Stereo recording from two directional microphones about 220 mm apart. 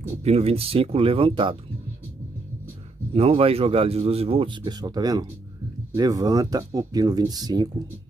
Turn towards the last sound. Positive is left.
turn(degrees=-20)  # may be behind; listen again after turning